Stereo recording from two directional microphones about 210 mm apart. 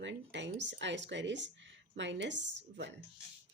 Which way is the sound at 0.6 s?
60° right (ahead or behind).